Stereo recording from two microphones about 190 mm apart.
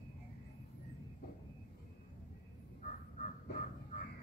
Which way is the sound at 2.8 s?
45° left (ahead or behind).